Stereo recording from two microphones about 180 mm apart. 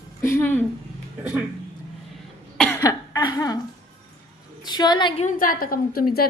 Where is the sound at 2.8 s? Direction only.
20° left (ahead or behind).